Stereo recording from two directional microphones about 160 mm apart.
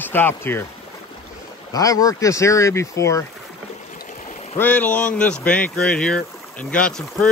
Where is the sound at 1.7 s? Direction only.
20° left (ahead or behind).